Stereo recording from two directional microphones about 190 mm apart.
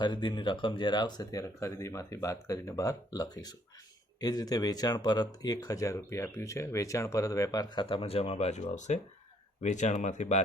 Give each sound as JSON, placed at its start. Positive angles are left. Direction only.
{"t": 0.0, "sound": "speech", "side_deg": 25}